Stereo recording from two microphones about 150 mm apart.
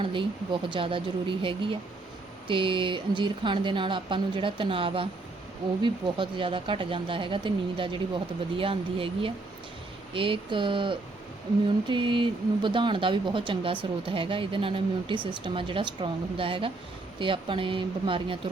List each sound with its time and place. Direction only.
0.0 s speech: 35° right (ahead or behind)